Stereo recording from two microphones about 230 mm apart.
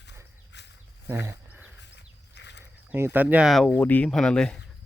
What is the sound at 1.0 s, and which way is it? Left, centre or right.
Wild animals, centre.